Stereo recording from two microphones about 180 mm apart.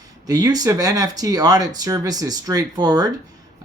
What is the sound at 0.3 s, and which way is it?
Speech, 20° right (ahead or behind).